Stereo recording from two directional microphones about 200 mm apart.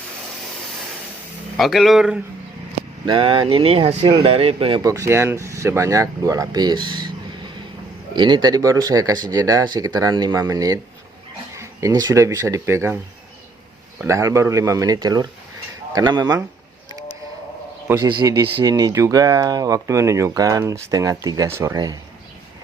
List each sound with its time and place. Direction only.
1.5 s speech: centre (ahead or behind)
3.1 s speech: 25° right (ahead or behind)
8.1 s speech: 20° right (ahead or behind)
14.0 s speech: 15° right (ahead or behind)
18.0 s speech: 20° right (ahead or behind)